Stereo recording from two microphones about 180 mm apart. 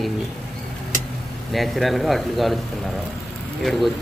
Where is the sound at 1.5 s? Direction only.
Centre (ahead or behind).